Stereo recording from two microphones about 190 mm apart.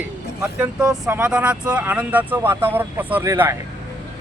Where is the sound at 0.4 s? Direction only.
5° right (ahead or behind).